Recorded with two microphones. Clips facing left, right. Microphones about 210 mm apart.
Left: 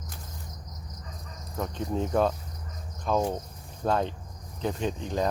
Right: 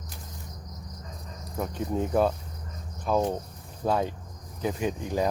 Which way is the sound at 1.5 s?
10° right (ahead or behind).